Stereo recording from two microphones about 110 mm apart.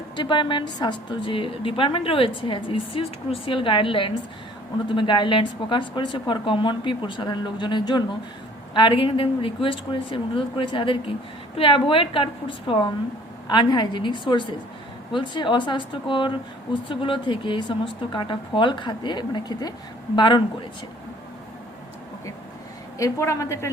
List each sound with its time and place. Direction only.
0.2 s a woman's voice: 45° left (ahead or behind)
23.0 s a woman's voice: 30° left (ahead or behind)